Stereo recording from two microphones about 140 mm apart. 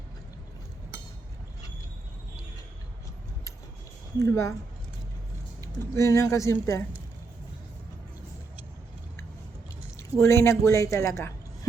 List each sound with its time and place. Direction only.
4.2 s speech: 20° left (ahead or behind)
5.9 s speech: 20° left (ahead or behind)
10.2 s speech: 20° left (ahead or behind)